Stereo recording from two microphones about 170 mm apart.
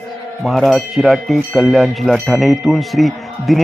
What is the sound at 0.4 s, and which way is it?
Speech, centre (ahead or behind).